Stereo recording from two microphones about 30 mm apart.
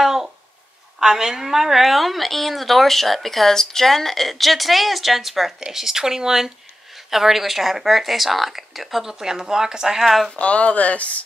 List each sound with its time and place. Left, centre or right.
0.0 s a sound: centre
0.9 s a woman's voice: centre
9.0 s a woman's voice: centre
10.0 s a woman's voice: centre
10.4 s speech: left